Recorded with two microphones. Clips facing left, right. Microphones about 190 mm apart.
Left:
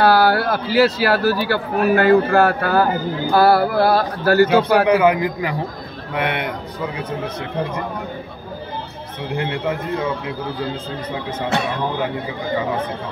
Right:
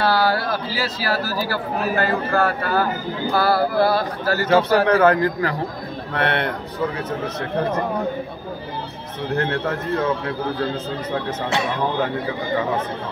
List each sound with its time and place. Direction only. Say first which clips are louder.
0.0 s a man's voice: left 5 dB; 60° left (ahead or behind)
4.8 s a man's voice: left 1 dB; 10° left (ahead or behind)
9.3 s a man's voice: even; 10° left (ahead or behind)